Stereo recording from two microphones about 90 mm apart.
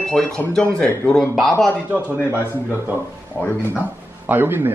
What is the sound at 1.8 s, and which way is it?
Speech, 20° right (ahead or behind).